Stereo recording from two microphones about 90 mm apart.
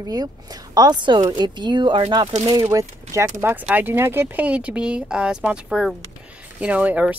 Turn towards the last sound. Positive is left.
turn(degrees=-15)  # may be behind; listen again after turning